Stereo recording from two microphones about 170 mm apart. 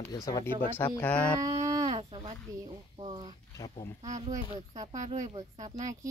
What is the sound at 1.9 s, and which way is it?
A child's voice, 35° right (ahead or behind).